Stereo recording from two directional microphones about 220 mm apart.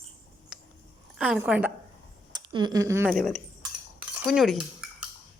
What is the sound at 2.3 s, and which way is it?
Speech, 20° right (ahead or behind).